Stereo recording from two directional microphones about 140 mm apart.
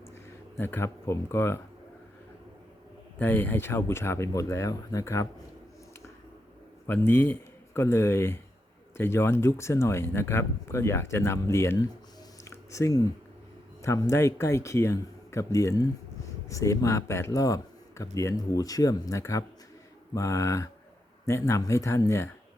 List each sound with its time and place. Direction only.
0.5 s speech: 15° left (ahead or behind)
3.2 s speech: 15° left (ahead or behind)
6.8 s a man's voice: 15° left (ahead or behind)
12.5 s a sound: 20° left (ahead or behind)
13.8 s speech: 20° left (ahead or behind)